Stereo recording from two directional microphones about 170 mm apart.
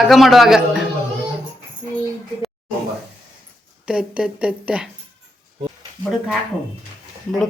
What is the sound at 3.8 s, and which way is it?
Speech, 5° right (ahead or behind).